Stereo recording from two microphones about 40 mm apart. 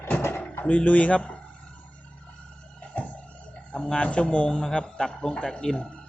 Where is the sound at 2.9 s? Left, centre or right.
Left.